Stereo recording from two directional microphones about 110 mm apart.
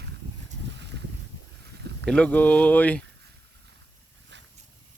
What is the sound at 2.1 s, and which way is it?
Speech, 10° left (ahead or behind).